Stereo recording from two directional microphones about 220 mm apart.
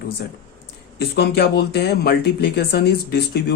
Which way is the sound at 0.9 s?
50° left (ahead or behind).